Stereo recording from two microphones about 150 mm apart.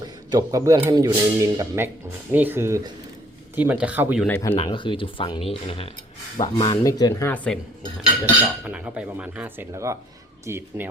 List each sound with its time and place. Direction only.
0.3 s a man's voice: 25° right (ahead or behind)
4.3 s cutlery: 15° left (ahead or behind)
4.5 s speech: 35° left (ahead or behind)
6.8 s cutlery: 25° left (ahead or behind); by 8.0 s 5° left (ahead or behind)
8.6 s speech: 10° right (ahead or behind)
9.7 s a man's voice: 20° right (ahead or behind)